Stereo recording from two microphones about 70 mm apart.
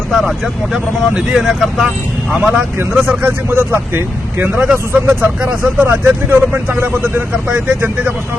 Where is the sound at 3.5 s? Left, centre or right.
Right.